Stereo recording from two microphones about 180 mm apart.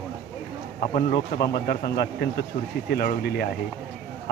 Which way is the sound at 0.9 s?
60° left (ahead or behind).